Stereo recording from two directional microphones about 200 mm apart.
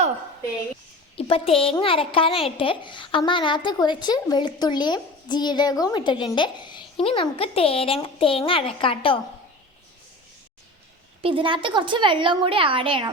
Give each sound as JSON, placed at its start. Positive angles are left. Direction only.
{"t": 1.1, "sound": "a woman's voice", "side_deg": 30}
{"t": 11.2, "sound": "a woman's voice", "side_deg": -25}